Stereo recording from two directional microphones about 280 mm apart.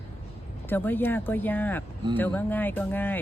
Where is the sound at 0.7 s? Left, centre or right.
Centre.